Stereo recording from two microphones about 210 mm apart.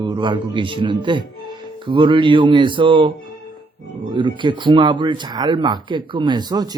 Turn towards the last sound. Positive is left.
turn(degrees=-20)  # may be behind; listen again after turning